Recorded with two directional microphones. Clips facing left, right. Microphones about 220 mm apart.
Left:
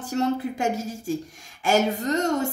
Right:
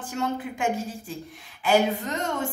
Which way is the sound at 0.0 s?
40° left (ahead or behind).